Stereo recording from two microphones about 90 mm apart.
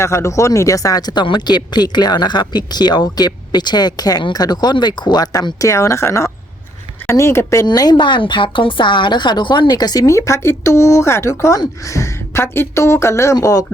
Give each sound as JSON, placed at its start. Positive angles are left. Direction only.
{"t": 0.0, "sound": "speech", "side_deg": 30}
{"t": 7.7, "sound": "speech", "side_deg": 50}
{"t": 13.3, "sound": "speech", "side_deg": 40}